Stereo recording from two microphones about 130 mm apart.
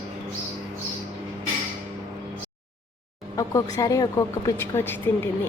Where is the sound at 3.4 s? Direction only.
30° left (ahead or behind).